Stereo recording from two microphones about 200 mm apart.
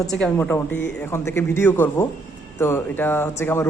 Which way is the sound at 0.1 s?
5° left (ahead or behind).